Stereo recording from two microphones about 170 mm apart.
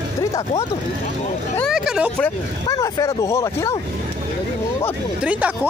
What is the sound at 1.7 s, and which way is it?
Vehicle, 5° right (ahead or behind).